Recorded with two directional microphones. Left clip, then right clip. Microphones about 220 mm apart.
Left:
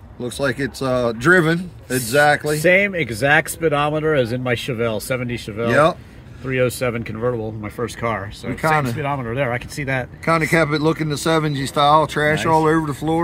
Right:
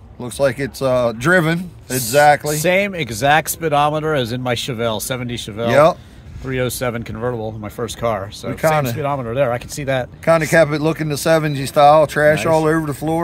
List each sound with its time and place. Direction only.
0.2 s speech: 45° right (ahead or behind)
2.6 s speech: 15° right (ahead or behind)
5.7 s speech: 45° right (ahead or behind)
6.4 s speech: 10° right (ahead or behind)
8.5 s speech: 45° right (ahead or behind)
8.9 s speech: 15° right (ahead or behind)
10.2 s speech: 45° right (ahead or behind)